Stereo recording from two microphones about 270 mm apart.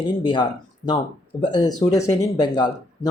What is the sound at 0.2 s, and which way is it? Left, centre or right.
Speech, centre.